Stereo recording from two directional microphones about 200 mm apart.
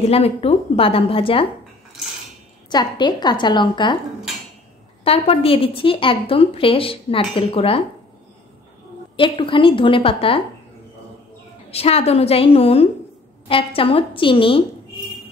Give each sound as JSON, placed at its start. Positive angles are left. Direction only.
{"t": 0.0, "sound": "a woman's voice", "side_deg": 30}
{"t": 2.7, "sound": "a woman's voice", "side_deg": 20}
{"t": 5.0, "sound": "a woman's voice", "side_deg": 30}
{"t": 9.1, "sound": "a woman's voice", "side_deg": 25}
{"t": 11.7, "sound": "a woman's voice", "side_deg": 30}